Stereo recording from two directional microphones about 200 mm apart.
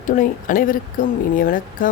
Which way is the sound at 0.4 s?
45° left (ahead or behind).